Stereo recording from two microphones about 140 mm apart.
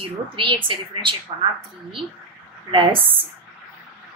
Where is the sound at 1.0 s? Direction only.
35° right (ahead or behind).